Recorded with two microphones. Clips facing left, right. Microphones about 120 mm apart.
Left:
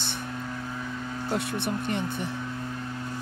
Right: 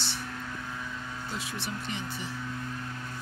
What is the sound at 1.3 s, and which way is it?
Speech, 55° left (ahead or behind).